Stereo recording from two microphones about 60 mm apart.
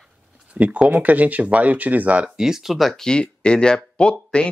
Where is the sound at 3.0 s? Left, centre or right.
Centre.